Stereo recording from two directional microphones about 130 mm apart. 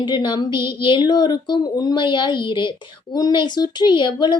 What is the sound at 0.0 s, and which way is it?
Speech, 35° left (ahead or behind).